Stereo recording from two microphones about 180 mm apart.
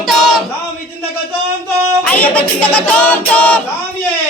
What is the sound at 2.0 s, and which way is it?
Music, 10° left (ahead or behind).